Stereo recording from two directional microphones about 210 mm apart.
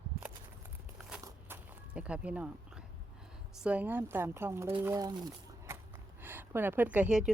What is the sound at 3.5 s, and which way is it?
A woman's voice, 5° right (ahead or behind).